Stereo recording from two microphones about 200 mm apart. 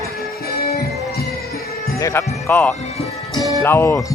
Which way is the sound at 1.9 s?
15° left (ahead or behind).